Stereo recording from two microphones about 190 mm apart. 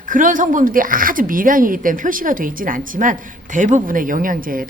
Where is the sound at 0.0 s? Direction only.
45° right (ahead or behind).